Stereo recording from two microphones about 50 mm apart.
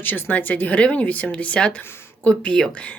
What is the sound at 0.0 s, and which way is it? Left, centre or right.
A woman's voice, left.